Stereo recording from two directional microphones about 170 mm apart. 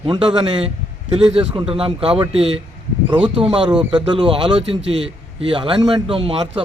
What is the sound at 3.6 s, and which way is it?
Speech, 5° right (ahead or behind).